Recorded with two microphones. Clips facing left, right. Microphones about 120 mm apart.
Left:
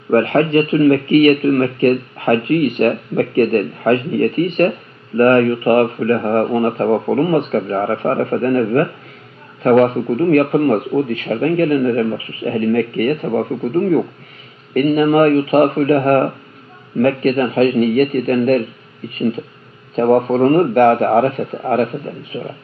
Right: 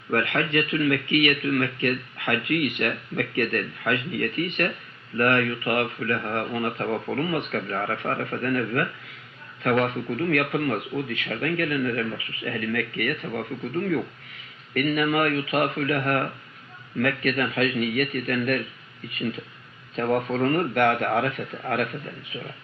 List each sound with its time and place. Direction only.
0.1 s speech: 35° left (ahead or behind)